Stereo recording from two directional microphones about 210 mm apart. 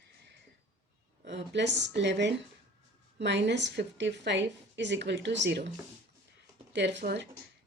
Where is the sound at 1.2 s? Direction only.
55° right (ahead or behind).